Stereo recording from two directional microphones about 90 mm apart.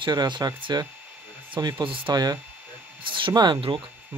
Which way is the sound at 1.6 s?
50° right (ahead or behind).